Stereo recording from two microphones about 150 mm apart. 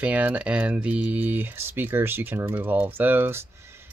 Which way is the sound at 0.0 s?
10° right (ahead or behind).